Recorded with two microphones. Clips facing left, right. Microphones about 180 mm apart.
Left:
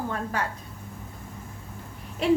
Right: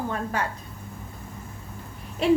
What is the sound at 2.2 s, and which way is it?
Speech, 25° right (ahead or behind).